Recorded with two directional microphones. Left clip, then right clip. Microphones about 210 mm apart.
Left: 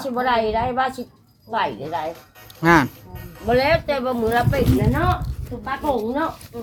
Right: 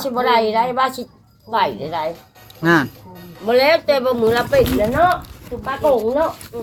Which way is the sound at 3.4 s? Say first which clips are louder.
Right 4 dB; 55° right (ahead or behind).